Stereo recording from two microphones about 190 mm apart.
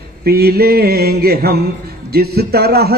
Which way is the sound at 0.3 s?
55° right (ahead or behind).